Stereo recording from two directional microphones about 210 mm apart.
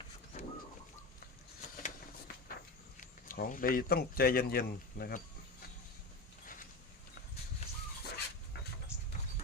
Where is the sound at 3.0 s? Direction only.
40° left (ahead or behind).